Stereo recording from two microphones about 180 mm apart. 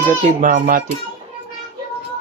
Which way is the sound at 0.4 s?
50° right (ahead or behind).